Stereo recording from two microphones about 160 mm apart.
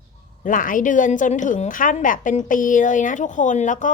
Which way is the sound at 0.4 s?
55° left (ahead or behind).